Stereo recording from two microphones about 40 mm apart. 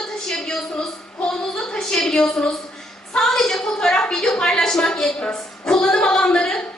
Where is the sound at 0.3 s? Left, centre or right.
Centre.